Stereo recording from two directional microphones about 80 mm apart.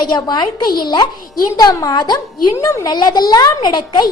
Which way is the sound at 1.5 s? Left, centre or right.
Left.